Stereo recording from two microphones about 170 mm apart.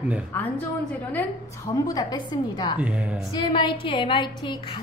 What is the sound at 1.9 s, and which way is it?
Speech, 25° left (ahead or behind).